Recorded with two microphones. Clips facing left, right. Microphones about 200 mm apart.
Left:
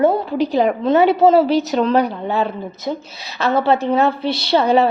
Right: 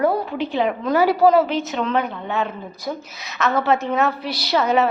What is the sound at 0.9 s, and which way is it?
A woman's voice, 25° left (ahead or behind).